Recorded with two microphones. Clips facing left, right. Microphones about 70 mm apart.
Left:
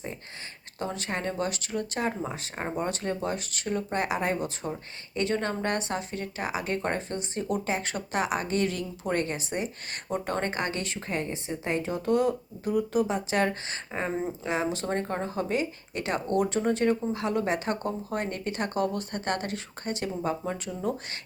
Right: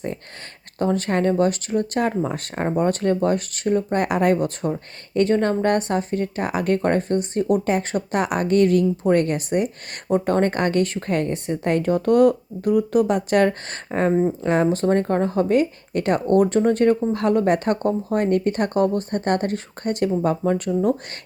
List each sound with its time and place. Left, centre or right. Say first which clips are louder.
0.8 s speech: right 11 dB; right